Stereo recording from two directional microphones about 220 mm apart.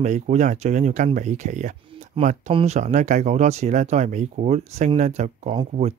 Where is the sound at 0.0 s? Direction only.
30° right (ahead or behind).